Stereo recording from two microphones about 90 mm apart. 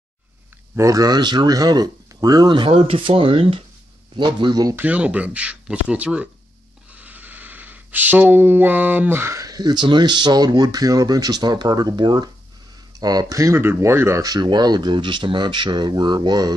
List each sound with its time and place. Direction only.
0.7 s speech: 40° right (ahead or behind)
2.5 s speech: 80° right
4.2 s speech: 55° right (ahead or behind)
4.7 s speech: 15° right (ahead or behind)
6.9 s a sound: 15° right (ahead or behind)
9.4 s speech: 50° right (ahead or behind)
13.6 s speech: 30° right (ahead or behind)
14.3 s speech: 55° right (ahead or behind)